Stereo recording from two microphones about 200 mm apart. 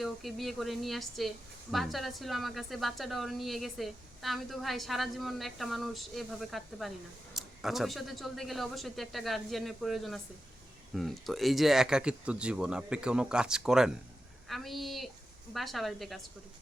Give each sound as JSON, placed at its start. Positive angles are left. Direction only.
{"t": 0.0, "sound": "a woman's voice", "side_deg": 0}